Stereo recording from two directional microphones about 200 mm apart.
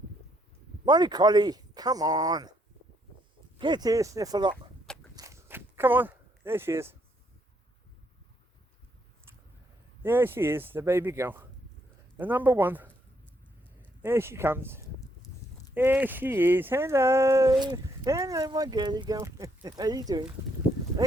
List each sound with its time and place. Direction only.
0.9 s speech: 20° right (ahead or behind)
3.6 s speech: 20° right (ahead or behind)
5.1 s a sound: 15° right (ahead or behind)
10.0 s speech: 10° right (ahead or behind)
14.0 s speech: 10° right (ahead or behind)